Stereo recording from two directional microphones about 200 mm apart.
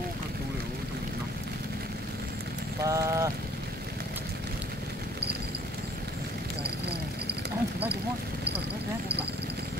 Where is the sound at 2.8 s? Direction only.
15° right (ahead or behind).